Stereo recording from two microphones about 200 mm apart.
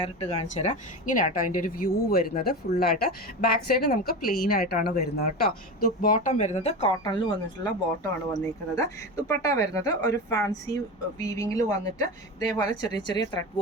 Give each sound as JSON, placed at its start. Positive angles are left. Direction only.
{"t": 0.0, "sound": "a woman's voice", "side_deg": 30}